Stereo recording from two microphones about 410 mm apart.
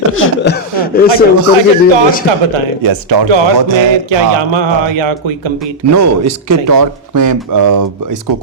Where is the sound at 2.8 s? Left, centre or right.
Right.